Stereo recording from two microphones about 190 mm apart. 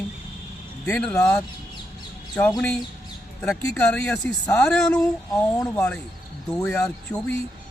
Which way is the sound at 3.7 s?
5° left (ahead or behind).